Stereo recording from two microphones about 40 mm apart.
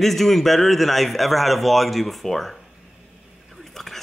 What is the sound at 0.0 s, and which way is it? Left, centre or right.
Speech, centre.